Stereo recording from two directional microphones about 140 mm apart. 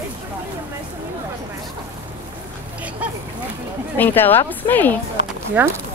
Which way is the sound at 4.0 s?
15° left (ahead or behind).